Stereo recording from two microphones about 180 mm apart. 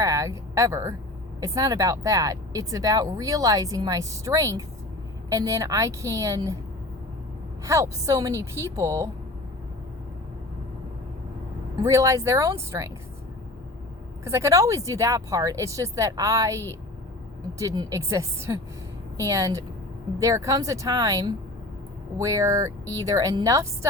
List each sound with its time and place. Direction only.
0.0 s a sound: 15° right (ahead or behind)
1.4 s speech: 20° right (ahead or behind)
7.6 s speech: 15° right (ahead or behind)
11.8 s speech: 15° right (ahead or behind)
14.3 s speech: 15° right (ahead or behind)